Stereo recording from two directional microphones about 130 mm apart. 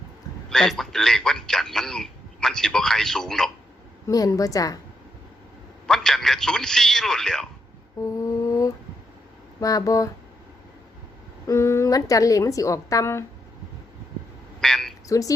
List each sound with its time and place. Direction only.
0.5 s a man's voice: 5° left (ahead or behind)
4.0 s a woman's voice: 25° left (ahead or behind)
5.9 s a man's voice: 5° left (ahead or behind)
8.0 s a sound: 25° left (ahead or behind)
9.6 s a woman's voice: 25° left (ahead or behind)
11.4 s a woman's voice: 20° left (ahead or behind)
14.6 s a sound: 5° left (ahead or behind)